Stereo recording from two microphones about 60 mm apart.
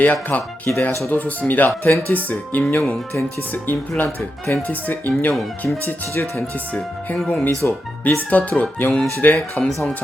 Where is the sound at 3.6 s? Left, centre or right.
Left.